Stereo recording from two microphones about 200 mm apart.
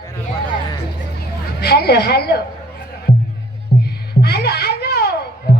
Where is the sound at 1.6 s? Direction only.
55° left (ahead or behind).